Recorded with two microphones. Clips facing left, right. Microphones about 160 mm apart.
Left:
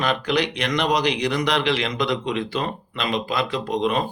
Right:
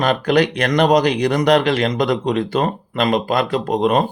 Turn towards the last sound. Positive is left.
turn(degrees=-45)  # may be behind; listen again after turning